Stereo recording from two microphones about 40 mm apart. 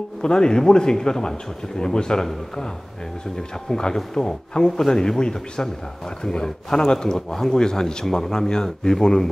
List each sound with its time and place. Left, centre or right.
0.2 s a man's voice: centre